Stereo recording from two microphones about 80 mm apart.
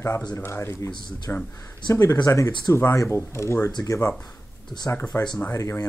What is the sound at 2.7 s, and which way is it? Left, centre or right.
A man's voice, left.